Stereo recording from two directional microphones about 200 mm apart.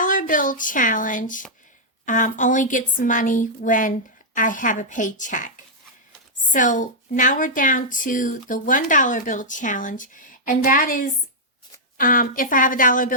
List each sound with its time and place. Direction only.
0.0 s a woman's voice: 40° left (ahead or behind)